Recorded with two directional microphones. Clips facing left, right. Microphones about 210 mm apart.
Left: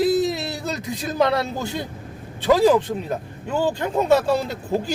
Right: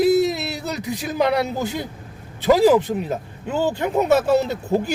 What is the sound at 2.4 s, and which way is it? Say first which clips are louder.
Speech: right 2 dB; 20° right (ahead or behind).